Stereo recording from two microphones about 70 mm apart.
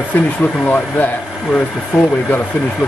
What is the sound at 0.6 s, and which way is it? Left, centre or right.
Speech, left.